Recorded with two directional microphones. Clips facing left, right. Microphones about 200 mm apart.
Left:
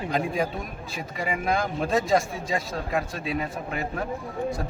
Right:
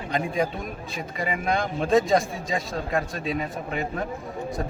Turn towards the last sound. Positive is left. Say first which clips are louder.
# right 1 dB
turn(degrees=0)  # may be behind; listen again after turning